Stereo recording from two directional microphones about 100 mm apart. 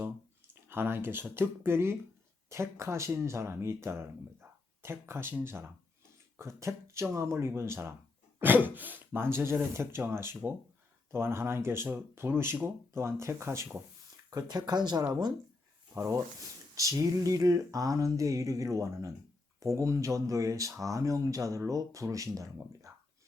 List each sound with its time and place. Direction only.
0.0 s speech: 25° right (ahead or behind)
14.3 s speech: 45° right (ahead or behind)
16.0 s speech: 30° right (ahead or behind)